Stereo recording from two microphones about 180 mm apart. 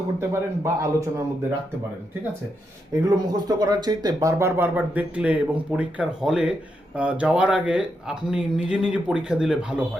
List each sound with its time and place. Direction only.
0.2 s speech: 15° right (ahead or behind)
2.9 s speech: 20° right (ahead or behind); by 9.8 s 5° right (ahead or behind)